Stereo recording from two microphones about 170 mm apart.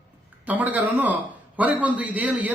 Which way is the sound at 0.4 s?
10° right (ahead or behind).